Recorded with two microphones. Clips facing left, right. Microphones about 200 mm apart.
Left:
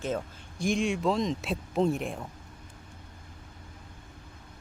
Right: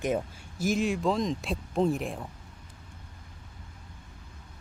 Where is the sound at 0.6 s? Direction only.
5° right (ahead or behind).